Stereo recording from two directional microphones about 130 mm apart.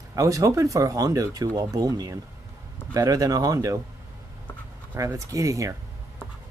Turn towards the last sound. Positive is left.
turn(degrees=-25)  # may be behind; listen again after turning